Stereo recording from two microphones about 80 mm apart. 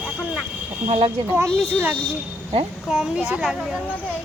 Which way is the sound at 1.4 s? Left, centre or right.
Right.